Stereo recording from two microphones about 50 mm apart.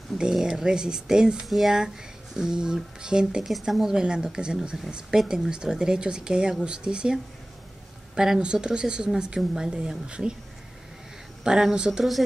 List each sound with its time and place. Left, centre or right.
0.2 s speech: centre
3.5 s speech: centre
11.4 s speech: centre